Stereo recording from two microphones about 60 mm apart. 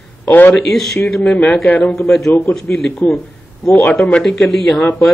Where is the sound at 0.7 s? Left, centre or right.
Centre.